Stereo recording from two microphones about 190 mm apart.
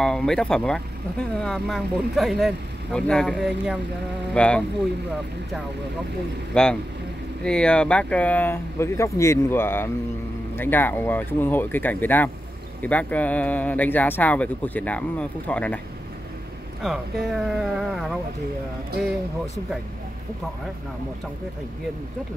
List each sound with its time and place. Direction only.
0.0 s speech: 5° left (ahead or behind)
6.5 s speech: 5° left (ahead or behind)
16.8 s speech: centre (ahead or behind)